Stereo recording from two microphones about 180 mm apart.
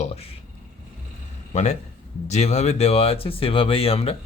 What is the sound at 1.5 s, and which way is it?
A man's voice, 40° left (ahead or behind).